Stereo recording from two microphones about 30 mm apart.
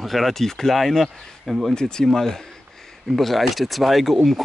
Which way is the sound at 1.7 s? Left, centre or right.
Left.